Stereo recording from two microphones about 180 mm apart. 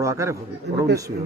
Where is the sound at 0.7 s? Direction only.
70° right (ahead or behind).